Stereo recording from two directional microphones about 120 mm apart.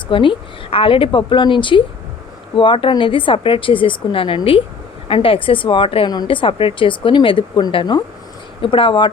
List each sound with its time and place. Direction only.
0.1 s a woman's voice: 45° left (ahead or behind)